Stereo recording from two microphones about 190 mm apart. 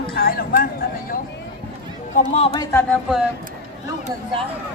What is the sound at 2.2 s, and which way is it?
Speech, 35° left (ahead or behind).